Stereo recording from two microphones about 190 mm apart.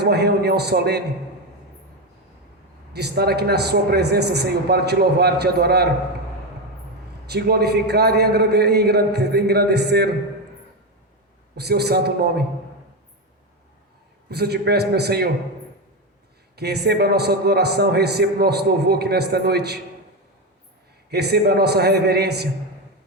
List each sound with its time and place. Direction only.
0.0 s a man's voice: 60° right (ahead or behind)
2.9 s a man's voice: 60° right (ahead or behind)
7.3 s a man's voice: 55° right (ahead or behind)
11.5 s a man's voice: 60° right (ahead or behind)
14.3 s a man's voice: 60° right (ahead or behind)
16.6 s a man's voice: 60° right (ahead or behind)
21.1 s a man's voice: 60° right (ahead or behind)